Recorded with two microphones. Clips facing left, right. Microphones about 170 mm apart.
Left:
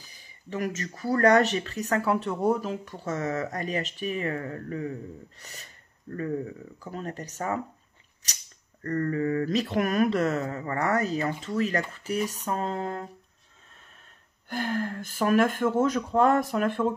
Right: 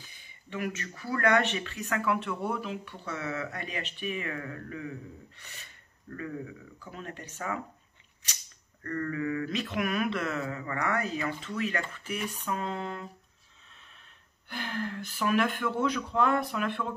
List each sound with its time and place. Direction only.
0.0 s speech: 35° left (ahead or behind)
8.8 s speech: 40° left (ahead or behind)
13.7 s a sound: 45° left (ahead or behind)
14.5 s speech: 45° left (ahead or behind)